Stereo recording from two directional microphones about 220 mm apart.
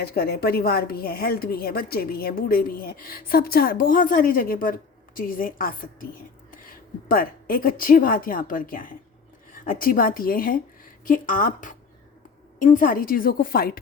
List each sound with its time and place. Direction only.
0.0 s a woman's voice: 45° left (ahead or behind)